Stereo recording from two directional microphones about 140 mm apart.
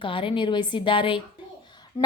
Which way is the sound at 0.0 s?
40° left (ahead or behind).